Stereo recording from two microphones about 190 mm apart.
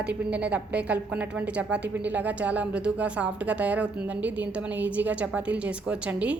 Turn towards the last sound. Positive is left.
turn(degrees=-5)  # may be behind; listen again after turning